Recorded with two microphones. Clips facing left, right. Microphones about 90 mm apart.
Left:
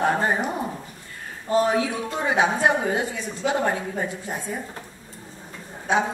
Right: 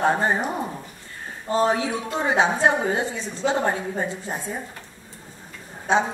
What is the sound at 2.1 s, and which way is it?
A man's voice, 20° right (ahead or behind).